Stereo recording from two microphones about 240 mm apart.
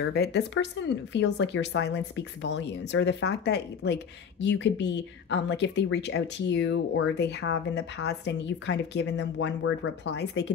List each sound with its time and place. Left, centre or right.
0.1 s speech: left